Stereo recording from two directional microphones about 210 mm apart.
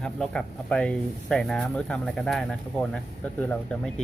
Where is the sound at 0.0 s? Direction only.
5° left (ahead or behind).